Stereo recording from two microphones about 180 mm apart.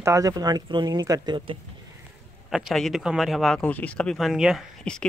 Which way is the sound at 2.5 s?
Centre (ahead or behind).